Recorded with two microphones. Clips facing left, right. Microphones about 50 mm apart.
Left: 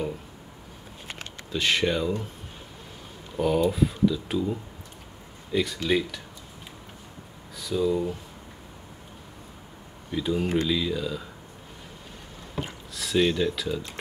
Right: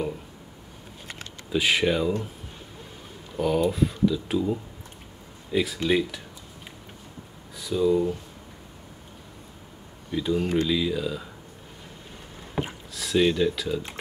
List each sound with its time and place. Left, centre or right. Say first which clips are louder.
1.5 s speech: right 2 dB; centre
3.3 s speech: even; centre
7.5 s speech: right 3 dB; centre
10.1 s speech: right 1 dB; centre
12.6 s rowboat: right 4 dB; right
12.9 s speech: right 1 dB; centre